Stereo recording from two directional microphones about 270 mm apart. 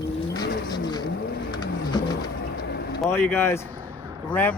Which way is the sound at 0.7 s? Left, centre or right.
Centre.